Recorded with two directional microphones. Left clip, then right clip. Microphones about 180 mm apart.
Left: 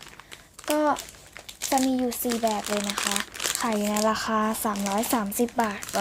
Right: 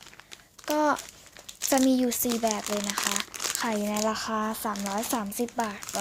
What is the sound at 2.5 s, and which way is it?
Speech, 10° right (ahead or behind).